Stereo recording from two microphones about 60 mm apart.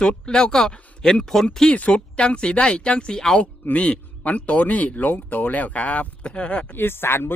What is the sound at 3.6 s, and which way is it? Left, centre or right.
Speech, left.